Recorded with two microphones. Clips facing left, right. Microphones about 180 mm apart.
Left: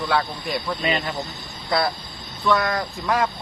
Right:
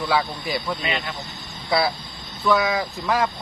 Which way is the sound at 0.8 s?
40° left (ahead or behind).